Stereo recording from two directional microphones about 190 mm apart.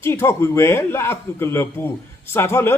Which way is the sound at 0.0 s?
15° left (ahead or behind).